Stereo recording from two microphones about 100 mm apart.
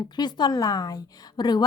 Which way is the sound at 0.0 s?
45° left (ahead or behind).